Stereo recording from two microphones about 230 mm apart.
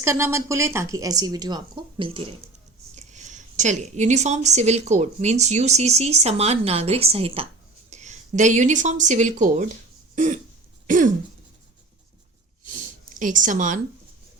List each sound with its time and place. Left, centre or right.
0.0 s a woman's voice: centre; by 9.6 s right
10.2 s throat clearing: right
12.7 s a sound: right